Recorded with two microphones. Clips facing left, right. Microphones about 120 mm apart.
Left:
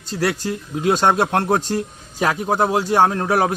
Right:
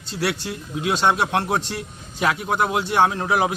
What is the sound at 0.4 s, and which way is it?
A man's voice, 45° left (ahead or behind).